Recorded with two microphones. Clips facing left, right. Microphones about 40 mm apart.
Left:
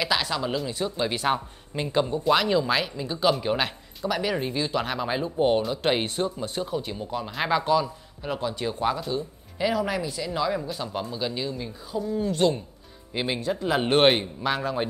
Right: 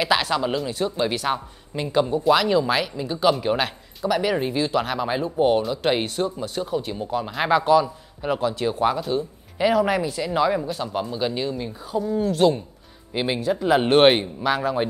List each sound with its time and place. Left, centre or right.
0.0 s a man's voice: centre
0.6 s speech: centre
1.1 s speech: centre
2.0 s a man's voice: centre; by 10.6 s right
10.7 s a man's voice: centre
12.0 s a man's voice: centre